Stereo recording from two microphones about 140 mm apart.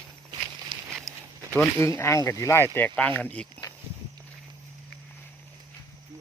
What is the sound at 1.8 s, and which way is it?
Speech, 20° left (ahead or behind).